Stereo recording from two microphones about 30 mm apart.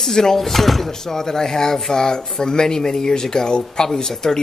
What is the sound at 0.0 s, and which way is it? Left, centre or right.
Speech, centre.